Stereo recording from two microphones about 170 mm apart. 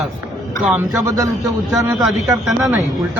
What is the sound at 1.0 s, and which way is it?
Speech, 20° right (ahead or behind).